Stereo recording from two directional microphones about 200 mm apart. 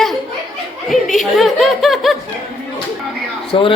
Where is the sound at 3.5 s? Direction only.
25° left (ahead or behind).